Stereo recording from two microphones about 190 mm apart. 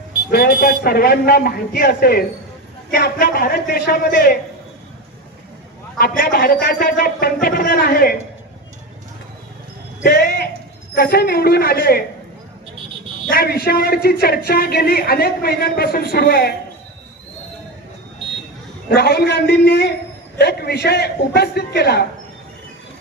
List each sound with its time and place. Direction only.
0.3 s speech: 50° left (ahead or behind)
6.0 s speech: 50° left (ahead or behind)
10.0 s a sound: 55° left (ahead or behind)
10.9 s speech: 55° left (ahead or behind)
13.3 s speech: 55° left (ahead or behind)
18.9 s a man's voice: 60° left (ahead or behind)